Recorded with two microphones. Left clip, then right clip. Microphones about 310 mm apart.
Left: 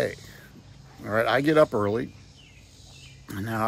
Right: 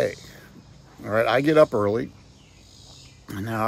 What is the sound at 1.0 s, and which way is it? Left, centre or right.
Speech, centre.